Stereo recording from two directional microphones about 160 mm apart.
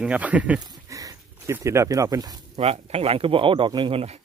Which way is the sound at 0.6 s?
25° right (ahead or behind).